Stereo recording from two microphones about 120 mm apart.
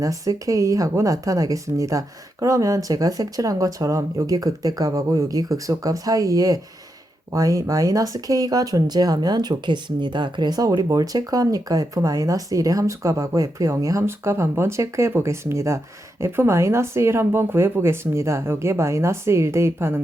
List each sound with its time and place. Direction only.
0.0 s speech: 30° right (ahead or behind)